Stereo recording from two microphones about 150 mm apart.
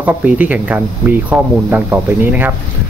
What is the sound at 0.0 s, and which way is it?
Speech, 10° right (ahead or behind).